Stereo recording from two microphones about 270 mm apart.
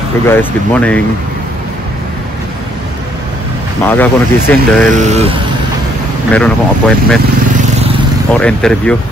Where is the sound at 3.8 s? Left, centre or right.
Centre.